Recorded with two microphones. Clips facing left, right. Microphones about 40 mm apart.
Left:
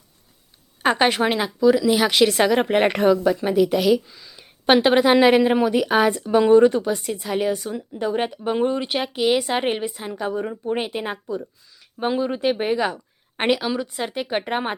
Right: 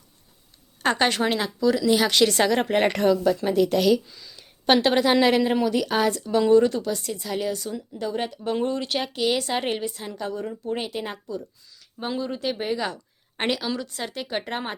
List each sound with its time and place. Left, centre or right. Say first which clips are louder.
0.8 s speech: left 3 dB; centre